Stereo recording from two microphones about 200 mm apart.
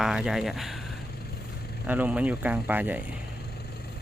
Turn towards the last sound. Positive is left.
turn(degrees=-10)  # may be behind; listen again after turning